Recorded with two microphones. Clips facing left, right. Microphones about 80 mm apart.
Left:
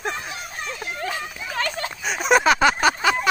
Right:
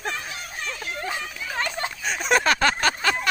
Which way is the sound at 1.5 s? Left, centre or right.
Centre.